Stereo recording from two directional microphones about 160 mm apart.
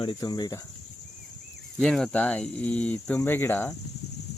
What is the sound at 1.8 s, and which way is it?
Speech, 5° left (ahead or behind).